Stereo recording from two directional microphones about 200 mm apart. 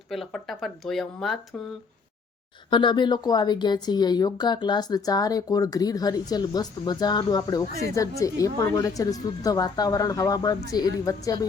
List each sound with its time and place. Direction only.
0.1 s speech: centre (ahead or behind)
2.6 s a woman's voice: 25° left (ahead or behind)